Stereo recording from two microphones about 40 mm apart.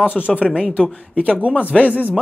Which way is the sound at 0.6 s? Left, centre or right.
Left.